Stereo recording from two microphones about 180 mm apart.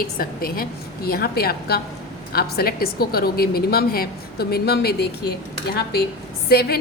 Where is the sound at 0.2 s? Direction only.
55° left (ahead or behind).